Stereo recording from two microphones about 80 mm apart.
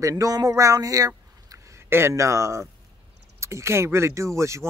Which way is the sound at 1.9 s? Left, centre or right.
Right.